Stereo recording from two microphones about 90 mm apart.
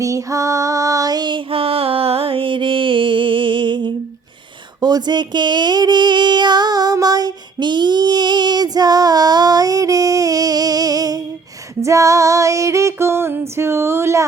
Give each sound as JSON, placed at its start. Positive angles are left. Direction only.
{"t": 0.0, "sound": "female singing", "side_deg": -35}
{"t": 1.5, "sound": "music", "side_deg": -90}
{"t": 4.8, "sound": "a sound", "side_deg": -50}
{"t": 11.8, "sound": "female singing", "side_deg": -35}